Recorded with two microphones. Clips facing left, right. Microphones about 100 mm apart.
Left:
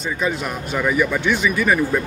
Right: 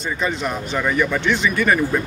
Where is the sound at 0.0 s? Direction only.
5° left (ahead or behind).